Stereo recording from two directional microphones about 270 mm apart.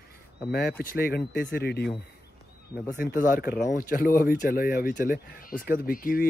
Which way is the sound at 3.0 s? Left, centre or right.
Left.